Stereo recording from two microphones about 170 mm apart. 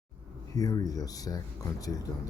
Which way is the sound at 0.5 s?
20° left (ahead or behind).